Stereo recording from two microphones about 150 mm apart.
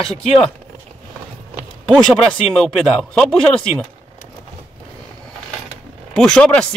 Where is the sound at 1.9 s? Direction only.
5° left (ahead or behind).